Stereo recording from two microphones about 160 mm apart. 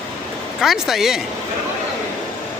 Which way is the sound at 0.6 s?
Centre (ahead or behind).